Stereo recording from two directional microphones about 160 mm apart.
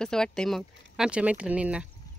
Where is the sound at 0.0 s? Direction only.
5° left (ahead or behind).